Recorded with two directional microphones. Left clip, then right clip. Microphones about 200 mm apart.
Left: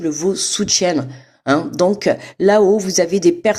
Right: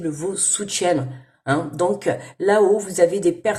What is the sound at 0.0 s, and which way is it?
Speech, 55° left (ahead or behind).